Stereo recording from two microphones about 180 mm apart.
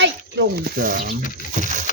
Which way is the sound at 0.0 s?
85° right.